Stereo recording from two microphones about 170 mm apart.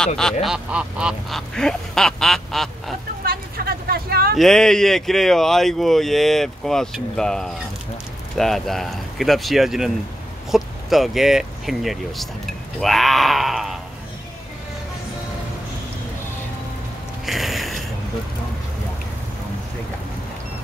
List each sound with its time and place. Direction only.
0.2 s speech: centre (ahead or behind)
3.3 s a sound: 60° right (ahead or behind)
4.4 s speech: 5° left (ahead or behind)
17.3 s mechanisms: centre (ahead or behind)